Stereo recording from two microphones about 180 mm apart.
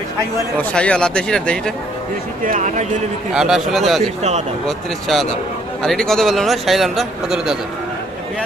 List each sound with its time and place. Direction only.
0.6 s a man's voice: 5° left (ahead or behind)
2.4 s speech: 45° right (ahead or behind)
3.3 s a man's voice: centre (ahead or behind)